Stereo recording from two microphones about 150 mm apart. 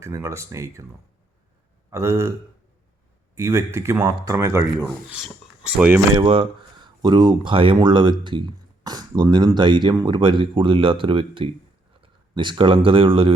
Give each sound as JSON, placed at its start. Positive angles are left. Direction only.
{"t": 0.0, "sound": "speech", "side_deg": -20}
{"t": 1.9, "sound": "speech", "side_deg": -20}
{"t": 3.3, "sound": "speech", "side_deg": -20}
{"t": 5.7, "sound": "speech", "side_deg": -10}
{"t": 6.1, "sound": "speech", "side_deg": -35}